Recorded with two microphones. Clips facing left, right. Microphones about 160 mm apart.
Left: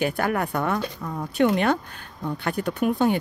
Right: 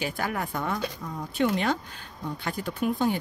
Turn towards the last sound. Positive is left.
turn(degrees=65)  # may be behind; listen again after turning